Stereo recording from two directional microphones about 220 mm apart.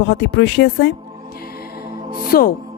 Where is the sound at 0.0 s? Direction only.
55° left (ahead or behind).